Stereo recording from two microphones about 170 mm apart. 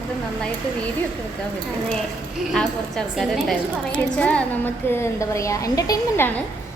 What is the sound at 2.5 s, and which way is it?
A woman's voice, centre (ahead or behind).